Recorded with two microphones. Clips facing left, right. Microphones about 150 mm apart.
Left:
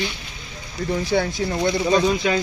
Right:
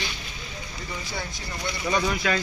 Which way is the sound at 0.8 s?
65° left (ahead or behind).